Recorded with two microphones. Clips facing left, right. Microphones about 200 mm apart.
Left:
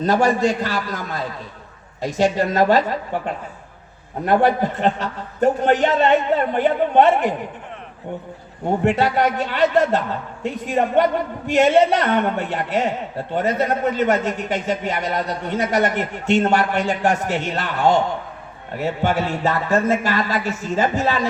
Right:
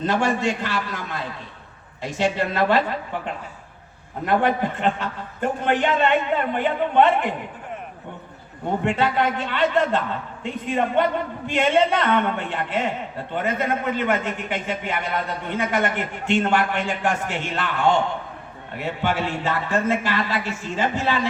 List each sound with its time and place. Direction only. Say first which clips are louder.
0.0 s a man's voice: left 4 dB; 40° left (ahead or behind)
8.8 s a man's voice: left 3 dB; 40° left (ahead or behind)